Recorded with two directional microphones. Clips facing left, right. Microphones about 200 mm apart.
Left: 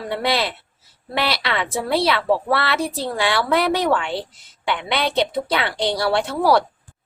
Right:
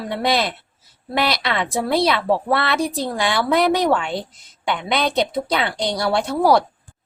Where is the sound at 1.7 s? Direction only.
15° right (ahead or behind).